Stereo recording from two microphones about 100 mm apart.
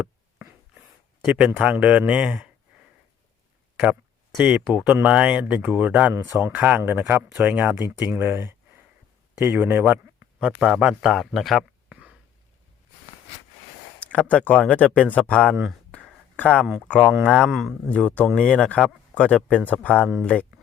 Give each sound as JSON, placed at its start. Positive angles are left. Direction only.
{"t": 0.0, "sound": "writing", "side_deg": -15}
{"t": 1.2, "sound": "speech", "side_deg": -10}
{"t": 4.4, "sound": "speech", "side_deg": -10}
{"t": 10.4, "sound": "a man's voice", "side_deg": -10}
{"t": 11.9, "sound": "a sound", "side_deg": -15}
{"t": 14.0, "sound": "speech", "side_deg": 10}
{"t": 17.1, "sound": "a man's voice", "side_deg": 0}
{"t": 17.8, "sound": "speech", "side_deg": 10}
{"t": 20.0, "sound": "speech", "side_deg": -5}
{"t": 20.2, "sound": "speech", "side_deg": 15}